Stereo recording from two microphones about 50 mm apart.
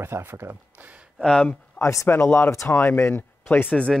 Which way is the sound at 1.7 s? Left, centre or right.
Left.